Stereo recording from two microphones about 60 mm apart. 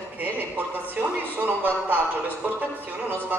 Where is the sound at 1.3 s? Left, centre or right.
Right.